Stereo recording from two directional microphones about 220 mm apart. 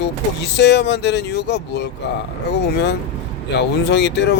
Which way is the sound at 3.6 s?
50° left (ahead or behind).